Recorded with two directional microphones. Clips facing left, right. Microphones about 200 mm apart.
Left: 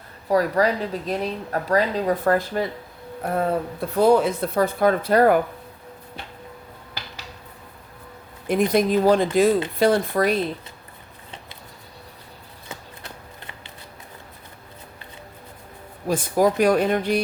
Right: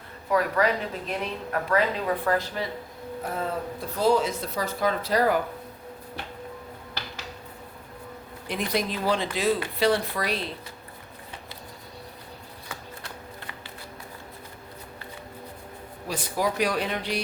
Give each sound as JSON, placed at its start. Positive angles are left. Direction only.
{"t": 0.3, "sound": "speech", "side_deg": 35}
{"t": 3.3, "sound": "speech", "side_deg": 60}
{"t": 8.4, "sound": "speech", "side_deg": 50}
{"t": 16.0, "sound": "speech", "side_deg": 50}